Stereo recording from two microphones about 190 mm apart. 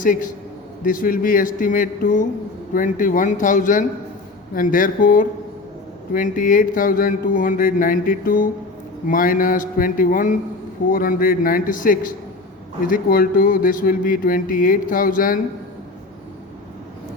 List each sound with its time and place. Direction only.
0.0 s speech: 45° left (ahead or behind)